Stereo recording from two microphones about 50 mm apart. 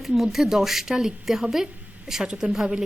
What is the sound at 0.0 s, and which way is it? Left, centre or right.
A woman's voice, centre.